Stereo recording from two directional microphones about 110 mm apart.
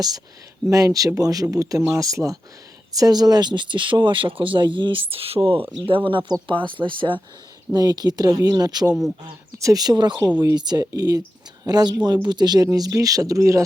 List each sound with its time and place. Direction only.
0.7 s speech: 30° right (ahead or behind); by 7.2 s 50° right (ahead or behind)
7.7 s speech: 35° right (ahead or behind)
8.9 s a man's voice: 5° right (ahead or behind)
9.6 s speech: 30° right (ahead or behind)